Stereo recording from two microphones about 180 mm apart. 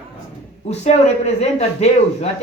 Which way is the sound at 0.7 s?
40° left (ahead or behind).